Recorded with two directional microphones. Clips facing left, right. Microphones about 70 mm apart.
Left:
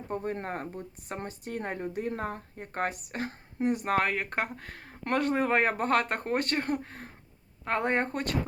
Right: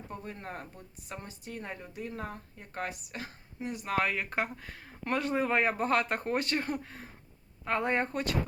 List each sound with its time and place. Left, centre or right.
0.1 s speech: left